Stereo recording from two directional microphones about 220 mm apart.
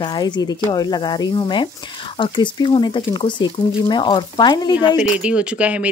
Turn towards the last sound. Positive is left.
turn(degrees=-5)  # may be behind; listen again after turning